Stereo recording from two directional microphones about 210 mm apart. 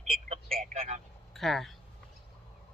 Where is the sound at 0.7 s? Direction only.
30° right (ahead or behind).